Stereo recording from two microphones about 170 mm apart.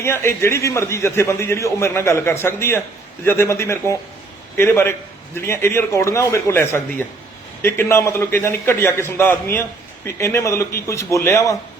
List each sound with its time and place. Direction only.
0.0 s a man's voice: 15° left (ahead or behind)